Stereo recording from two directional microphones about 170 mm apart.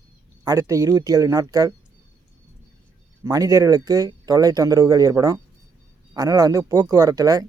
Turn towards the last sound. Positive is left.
turn(degrees=-20)  # may be behind; listen again after turning